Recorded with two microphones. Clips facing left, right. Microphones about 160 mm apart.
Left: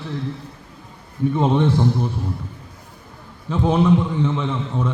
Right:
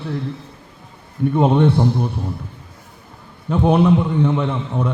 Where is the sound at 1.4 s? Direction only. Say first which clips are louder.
Right 4 dB; 10° right (ahead or behind).